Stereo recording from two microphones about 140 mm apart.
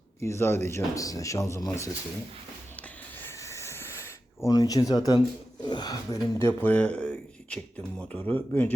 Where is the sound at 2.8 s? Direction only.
15° left (ahead or behind).